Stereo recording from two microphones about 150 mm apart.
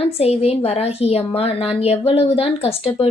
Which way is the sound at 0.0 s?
40° left (ahead or behind).